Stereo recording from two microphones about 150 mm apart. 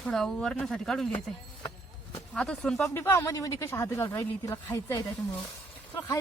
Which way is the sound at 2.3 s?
5° left (ahead or behind).